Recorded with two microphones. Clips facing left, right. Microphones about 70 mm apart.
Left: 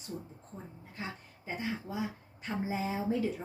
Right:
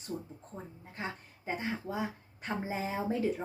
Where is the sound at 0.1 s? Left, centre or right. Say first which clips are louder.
Right 3 dB; centre.